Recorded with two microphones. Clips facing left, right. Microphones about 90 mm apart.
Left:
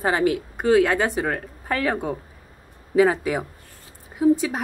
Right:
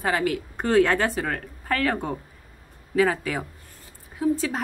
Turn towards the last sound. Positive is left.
turn(degrees=15)  # may be behind; listen again after turning